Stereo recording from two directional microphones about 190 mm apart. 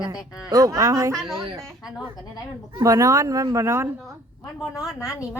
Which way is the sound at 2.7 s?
15° right (ahead or behind).